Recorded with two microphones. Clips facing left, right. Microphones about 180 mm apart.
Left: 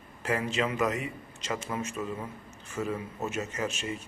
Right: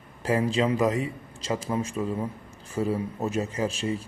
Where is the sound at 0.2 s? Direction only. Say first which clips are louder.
Right 5 dB; 35° right (ahead or behind).